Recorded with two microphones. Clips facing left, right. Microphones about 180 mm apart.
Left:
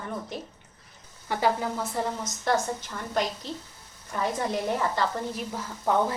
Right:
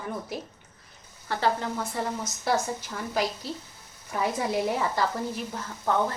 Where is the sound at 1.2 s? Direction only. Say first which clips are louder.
Left 1 dB; 10° left (ahead or behind).